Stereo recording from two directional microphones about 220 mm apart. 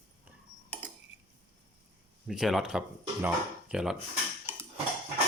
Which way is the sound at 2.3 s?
Centre (ahead or behind).